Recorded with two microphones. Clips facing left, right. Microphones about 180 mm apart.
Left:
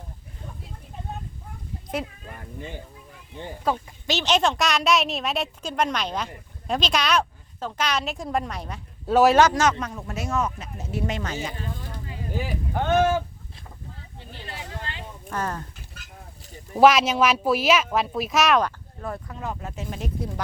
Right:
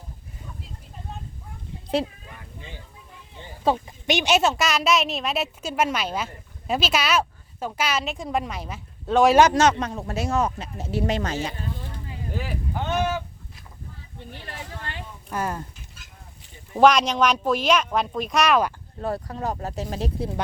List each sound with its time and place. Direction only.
2.0 s speech: 30° right (ahead or behind)
2.3 s speech: 50° left (ahead or behind)
3.6 s speech: 20° right (ahead or behind); by 9.3 s 5° left (ahead or behind)
9.6 s speech: 30° right (ahead or behind)
12.3 s speech: centre (ahead or behind)
12.7 s speech: 55° left (ahead or behind)
15.3 s speech: 10° right (ahead or behind)
16.7 s speech: 5° left (ahead or behind)
18.9 s speech: 35° right (ahead or behind)